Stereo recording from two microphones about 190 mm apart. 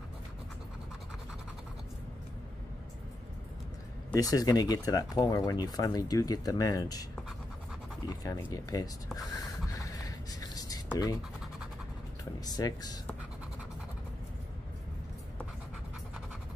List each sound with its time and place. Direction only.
4.1 s speech: 20° left (ahead or behind)
8.1 s a sound: 20° left (ahead or behind)
10.9 s speech: 20° left (ahead or behind)
12.4 s speech: 20° left (ahead or behind)